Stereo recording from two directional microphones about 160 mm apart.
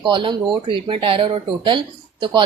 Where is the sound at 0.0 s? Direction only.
30° right (ahead or behind).